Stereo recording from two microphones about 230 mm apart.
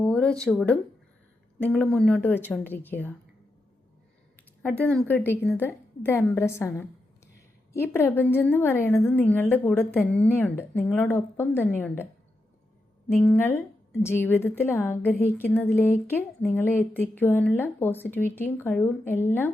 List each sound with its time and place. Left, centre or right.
0.0 s a sound: centre
0.4 s speech: centre
4.8 s speech: centre
13.2 s speech: centre